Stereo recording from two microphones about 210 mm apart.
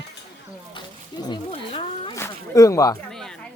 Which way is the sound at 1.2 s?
25° left (ahead or behind).